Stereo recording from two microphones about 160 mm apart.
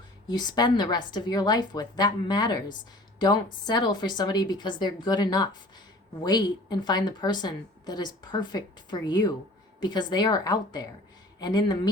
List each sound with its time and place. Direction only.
0.3 s a woman's voice: 25° left (ahead or behind)